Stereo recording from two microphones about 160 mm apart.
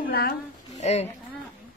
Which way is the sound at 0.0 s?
70° left (ahead or behind).